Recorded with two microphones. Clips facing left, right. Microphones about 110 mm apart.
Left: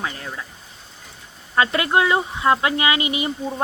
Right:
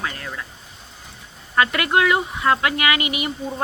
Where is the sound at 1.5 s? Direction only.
25° left (ahead or behind).